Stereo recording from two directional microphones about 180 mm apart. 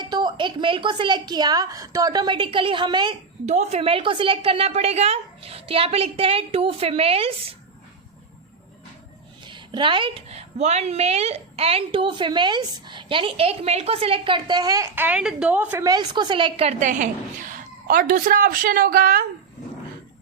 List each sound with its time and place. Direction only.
0.1 s a woman's voice: 25° right (ahead or behind)
3.4 s a woman's voice: 40° right (ahead or behind)
9.4 s a woman's voice: 25° right (ahead or behind); by 15.8 s 5° right (ahead or behind)
15.8 s a woman's voice: 20° right (ahead or behind); by 19.2 s 50° right (ahead or behind)